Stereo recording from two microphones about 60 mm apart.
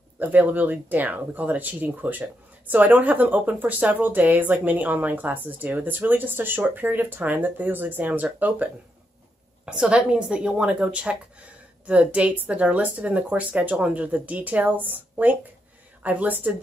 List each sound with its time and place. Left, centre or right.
0.2 s speech: right
9.7 s a woman's voice: centre